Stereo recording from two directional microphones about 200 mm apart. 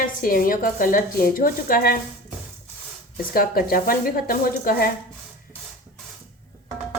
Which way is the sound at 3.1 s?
45° left (ahead or behind).